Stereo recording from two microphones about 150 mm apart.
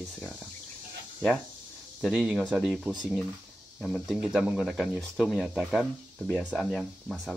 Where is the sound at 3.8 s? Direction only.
Centre (ahead or behind).